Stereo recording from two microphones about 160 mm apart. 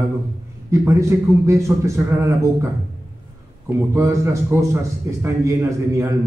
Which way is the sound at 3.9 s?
15° right (ahead or behind).